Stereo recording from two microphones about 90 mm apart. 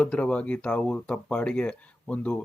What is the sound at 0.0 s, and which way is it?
Speech, 15° left (ahead or behind).